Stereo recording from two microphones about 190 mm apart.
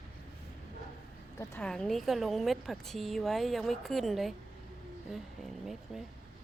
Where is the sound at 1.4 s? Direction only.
15° left (ahead or behind).